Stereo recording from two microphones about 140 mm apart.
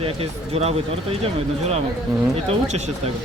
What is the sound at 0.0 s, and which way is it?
Speech, 45° right (ahead or behind).